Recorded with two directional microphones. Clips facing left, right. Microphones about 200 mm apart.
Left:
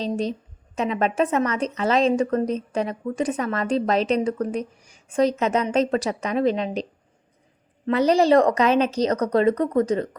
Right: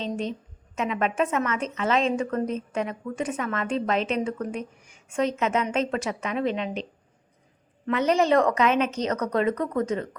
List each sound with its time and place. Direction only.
0.0 s a woman's voice: 35° left (ahead or behind)
7.9 s a woman's voice: 35° left (ahead or behind)